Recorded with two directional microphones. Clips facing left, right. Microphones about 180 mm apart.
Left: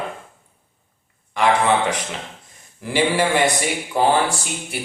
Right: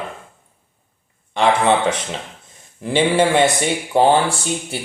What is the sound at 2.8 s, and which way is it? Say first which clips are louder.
Speech: right 3 dB; 25° right (ahead or behind).